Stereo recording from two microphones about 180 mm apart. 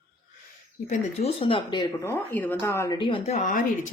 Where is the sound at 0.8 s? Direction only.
40° left (ahead or behind).